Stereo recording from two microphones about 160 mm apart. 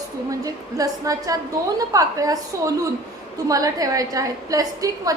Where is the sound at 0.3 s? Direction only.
20° right (ahead or behind).